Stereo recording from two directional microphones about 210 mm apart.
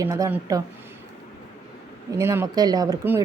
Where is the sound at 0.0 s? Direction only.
15° right (ahead or behind).